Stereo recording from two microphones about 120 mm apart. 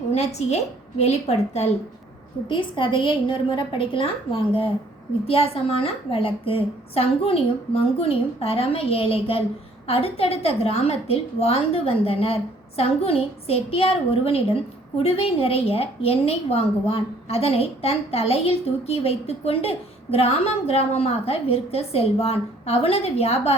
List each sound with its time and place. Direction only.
0.1 s a woman's voice: 65° left (ahead or behind)
2.5 s a woman's voice: 45° left (ahead or behind); by 23.6 s 60° left (ahead or behind)